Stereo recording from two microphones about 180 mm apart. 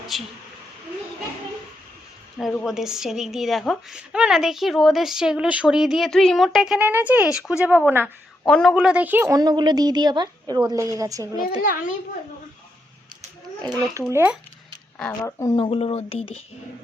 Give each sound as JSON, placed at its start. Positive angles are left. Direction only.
{"t": 0.1, "sound": "a woman's voice", "side_deg": 0}
{"t": 2.4, "sound": "speech", "side_deg": 10}
{"t": 2.6, "sound": "a woman's voice", "side_deg": -5}
{"t": 8.4, "sound": "a woman's voice", "side_deg": 5}
{"t": 11.3, "sound": "a child's voice", "side_deg": 55}
{"t": 14.1, "sound": "speech", "side_deg": -10}
{"t": 14.9, "sound": "speech", "side_deg": 10}
{"t": 15.5, "sound": "speech", "side_deg": 30}